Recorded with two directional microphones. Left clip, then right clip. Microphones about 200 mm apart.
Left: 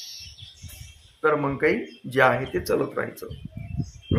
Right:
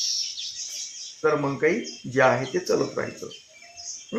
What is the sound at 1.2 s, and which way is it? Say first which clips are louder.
Speech: left 1 dB; 10° left (ahead or behind).